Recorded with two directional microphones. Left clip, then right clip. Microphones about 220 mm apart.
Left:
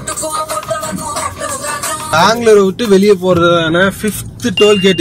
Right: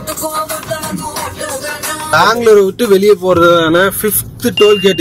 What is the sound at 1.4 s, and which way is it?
Speech, centre (ahead or behind).